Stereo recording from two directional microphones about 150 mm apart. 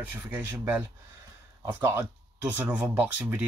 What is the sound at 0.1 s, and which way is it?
Speech, 10° right (ahead or behind).